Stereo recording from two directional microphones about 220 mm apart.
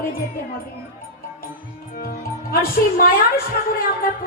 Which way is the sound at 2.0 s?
40° left (ahead or behind).